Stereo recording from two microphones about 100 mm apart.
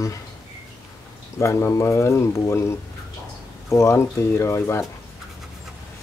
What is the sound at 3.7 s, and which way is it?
Speech, 30° left (ahead or behind).